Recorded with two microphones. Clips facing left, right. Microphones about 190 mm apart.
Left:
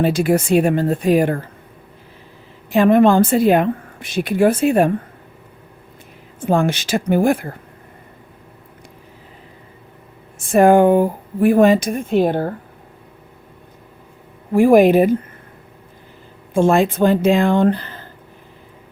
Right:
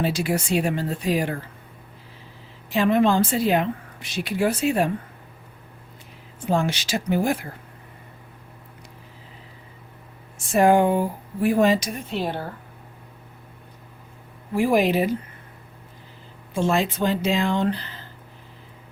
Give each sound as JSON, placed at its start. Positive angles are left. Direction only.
{"t": 0.0, "sound": "a woman's voice", "side_deg": 50}
{"t": 2.6, "sound": "a woman's voice", "side_deg": 50}
{"t": 6.4, "sound": "a woman's voice", "side_deg": 50}
{"t": 10.3, "sound": "a woman's voice", "side_deg": 50}
{"t": 14.5, "sound": "a woman's voice", "side_deg": 50}
{"t": 16.6, "sound": "a woman's voice", "side_deg": 50}